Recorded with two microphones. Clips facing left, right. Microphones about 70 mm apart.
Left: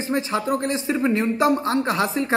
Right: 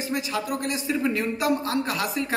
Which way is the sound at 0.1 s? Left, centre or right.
Left.